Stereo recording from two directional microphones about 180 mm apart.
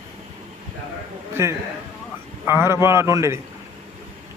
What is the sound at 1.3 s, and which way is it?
A man's voice, 15° right (ahead or behind).